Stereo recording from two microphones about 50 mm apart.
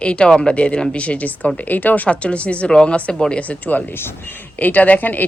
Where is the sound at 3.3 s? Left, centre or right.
Left.